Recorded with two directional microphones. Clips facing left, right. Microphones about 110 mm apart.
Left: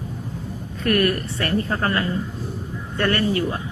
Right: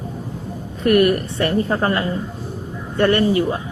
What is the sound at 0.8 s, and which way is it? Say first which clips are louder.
A woman's voice: right 5 dB; 20° right (ahead or behind).